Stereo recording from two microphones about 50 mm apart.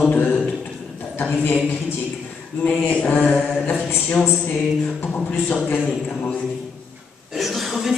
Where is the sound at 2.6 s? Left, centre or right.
Left.